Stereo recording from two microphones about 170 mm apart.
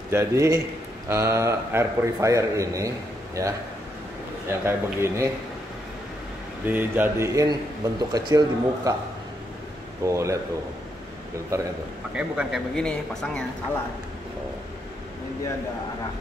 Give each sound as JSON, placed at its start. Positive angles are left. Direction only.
{"t": 0.1, "sound": "a man's voice", "side_deg": -15}
{"t": 6.6, "sound": "a man's voice", "side_deg": -10}
{"t": 10.0, "sound": "a man's voice", "side_deg": -15}
{"t": 11.5, "sound": "a man's voice", "side_deg": -15}
{"t": 12.1, "sound": "speech", "side_deg": -5}
{"t": 12.7, "sound": "speech", "side_deg": 5}